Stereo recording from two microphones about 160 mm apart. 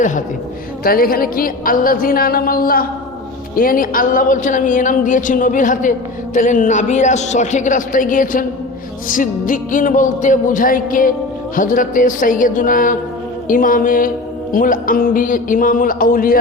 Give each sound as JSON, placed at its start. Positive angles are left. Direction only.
{"t": 0.9, "sound": "a man's voice", "side_deg": 65}